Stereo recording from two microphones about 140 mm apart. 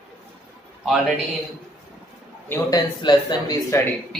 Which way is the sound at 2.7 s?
30° left (ahead or behind).